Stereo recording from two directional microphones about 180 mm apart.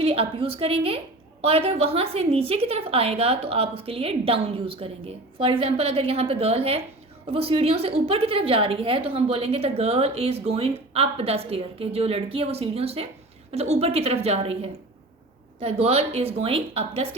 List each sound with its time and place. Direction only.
0.0 s a woman's voice: 30° right (ahead or behind)